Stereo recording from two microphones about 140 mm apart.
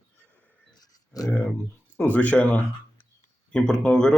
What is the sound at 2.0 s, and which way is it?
Speech, 10° left (ahead or behind).